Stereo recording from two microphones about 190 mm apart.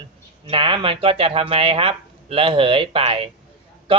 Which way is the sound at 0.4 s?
25° right (ahead or behind).